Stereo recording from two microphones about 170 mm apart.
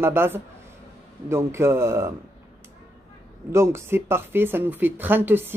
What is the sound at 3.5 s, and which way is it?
Speech, 15° right (ahead or behind).